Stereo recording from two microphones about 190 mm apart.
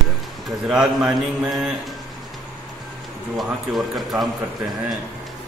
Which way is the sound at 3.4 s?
Centre (ahead or behind).